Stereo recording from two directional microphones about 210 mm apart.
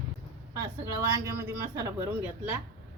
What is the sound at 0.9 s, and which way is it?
Speech, 15° right (ahead or behind).